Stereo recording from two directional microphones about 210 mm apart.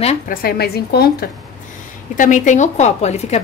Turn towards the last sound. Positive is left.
turn(degrees=30)  # may be behind; listen again after turning